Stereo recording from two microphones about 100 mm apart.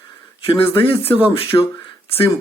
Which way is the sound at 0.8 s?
70° left (ahead or behind).